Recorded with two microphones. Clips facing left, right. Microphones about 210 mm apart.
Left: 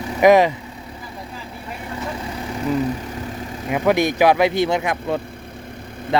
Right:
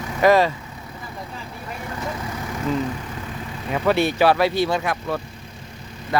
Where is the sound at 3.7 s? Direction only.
15° left (ahead or behind).